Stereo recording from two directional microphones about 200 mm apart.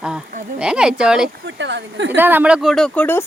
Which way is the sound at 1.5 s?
65° right (ahead or behind).